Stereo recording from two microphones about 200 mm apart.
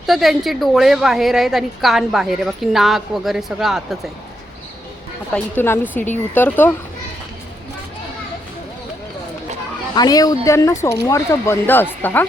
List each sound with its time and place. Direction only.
0.0 s a woman's voice: centre (ahead or behind)
5.3 s speech: 10° left (ahead or behind)
9.9 s speech: 20° left (ahead or behind)